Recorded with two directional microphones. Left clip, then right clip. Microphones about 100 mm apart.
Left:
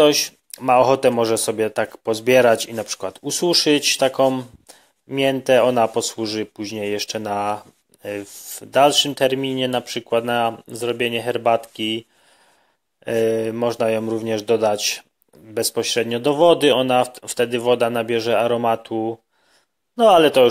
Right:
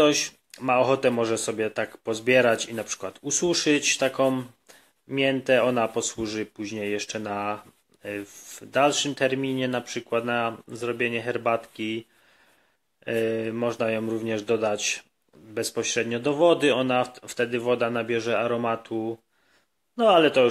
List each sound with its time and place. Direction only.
0.0 s speech: 20° left (ahead or behind)